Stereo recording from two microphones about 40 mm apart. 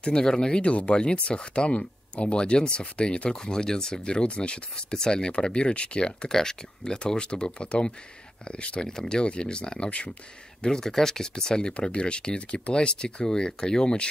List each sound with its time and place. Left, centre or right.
0.0 s speech: centre
0.6 s speech: left
8.8 s speech: centre
10.6 s speech: centre